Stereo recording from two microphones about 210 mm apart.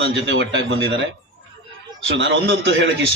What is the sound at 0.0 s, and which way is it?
Speech, 60° right (ahead or behind).